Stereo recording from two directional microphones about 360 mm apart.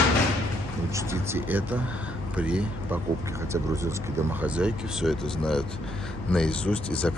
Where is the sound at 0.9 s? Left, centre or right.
Centre.